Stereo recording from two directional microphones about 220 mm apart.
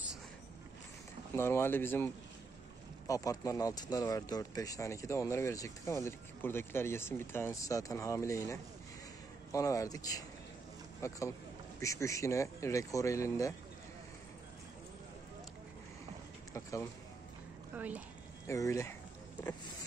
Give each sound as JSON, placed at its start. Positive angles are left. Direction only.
{"t": 1.3, "sound": "speech", "side_deg": 10}
{"t": 3.1, "sound": "speech", "side_deg": 15}
{"t": 17.7, "sound": "speech", "side_deg": -5}
{"t": 18.5, "sound": "speech", "side_deg": 15}